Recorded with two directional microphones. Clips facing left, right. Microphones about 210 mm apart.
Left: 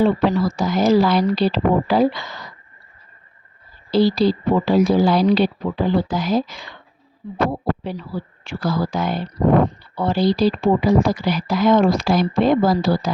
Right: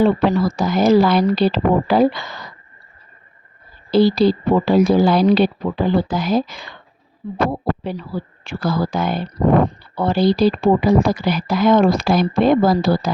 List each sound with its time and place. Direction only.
0.3 s speech: 55° right (ahead or behind)
3.9 s speech: 55° right (ahead or behind)